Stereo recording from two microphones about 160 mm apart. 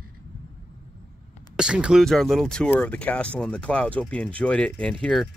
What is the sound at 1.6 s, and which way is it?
Speech, 5° right (ahead or behind).